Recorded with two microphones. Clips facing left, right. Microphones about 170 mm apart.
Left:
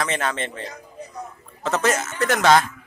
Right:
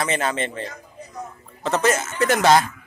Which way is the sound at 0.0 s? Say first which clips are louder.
Right 2 dB; 5° right (ahead or behind).